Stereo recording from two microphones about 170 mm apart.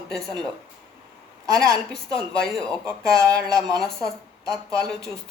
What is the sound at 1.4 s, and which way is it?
Speech, 20° right (ahead or behind).